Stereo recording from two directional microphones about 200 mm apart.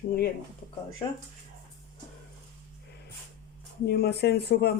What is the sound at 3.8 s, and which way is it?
Speech, 55° left (ahead or behind).